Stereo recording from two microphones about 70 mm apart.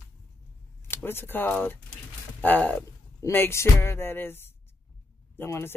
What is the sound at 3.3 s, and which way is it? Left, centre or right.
Speech, left.